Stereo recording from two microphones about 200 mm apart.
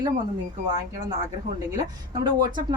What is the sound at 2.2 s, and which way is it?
Speech, 20° right (ahead or behind).